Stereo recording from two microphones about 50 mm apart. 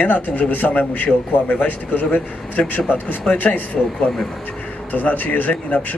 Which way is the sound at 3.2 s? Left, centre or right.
Left.